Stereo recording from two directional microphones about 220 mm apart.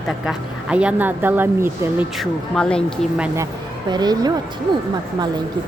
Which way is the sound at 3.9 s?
20° right (ahead or behind).